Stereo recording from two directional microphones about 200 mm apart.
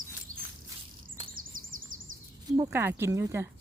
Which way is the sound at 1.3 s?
45° right (ahead or behind).